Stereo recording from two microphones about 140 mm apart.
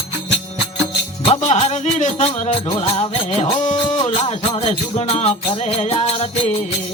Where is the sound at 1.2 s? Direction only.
50° left (ahead or behind).